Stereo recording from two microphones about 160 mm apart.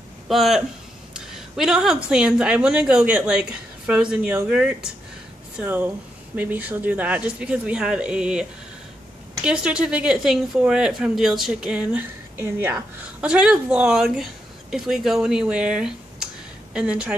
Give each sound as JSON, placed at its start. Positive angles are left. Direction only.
{"t": 0.3, "sound": "a woman's voice", "side_deg": 0}